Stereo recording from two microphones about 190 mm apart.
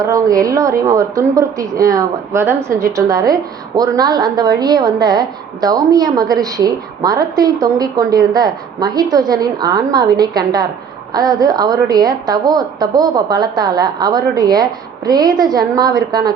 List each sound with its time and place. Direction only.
0.0 s a woman's voice: 20° right (ahead or behind)